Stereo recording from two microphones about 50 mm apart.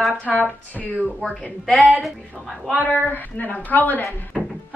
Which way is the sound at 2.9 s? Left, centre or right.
Left.